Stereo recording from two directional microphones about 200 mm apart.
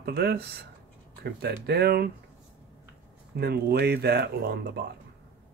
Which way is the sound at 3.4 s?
55° right (ahead or behind).